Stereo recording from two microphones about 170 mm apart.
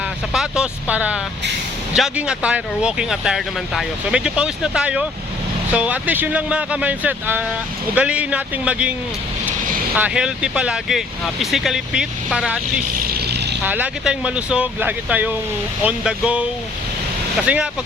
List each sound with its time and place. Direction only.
0.3 s speech: 5° right (ahead or behind)
10.0 s speech: 5° right (ahead or behind)
13.1 s vehicle: 70° right (ahead or behind)
13.7 s speech: 10° right (ahead or behind)